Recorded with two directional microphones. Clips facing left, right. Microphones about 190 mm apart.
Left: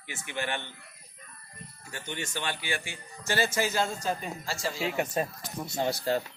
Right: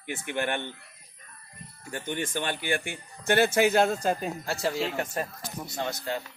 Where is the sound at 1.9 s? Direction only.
50° right (ahead or behind).